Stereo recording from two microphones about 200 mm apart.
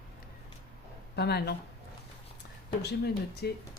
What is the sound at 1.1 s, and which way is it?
Speech, 55° left (ahead or behind).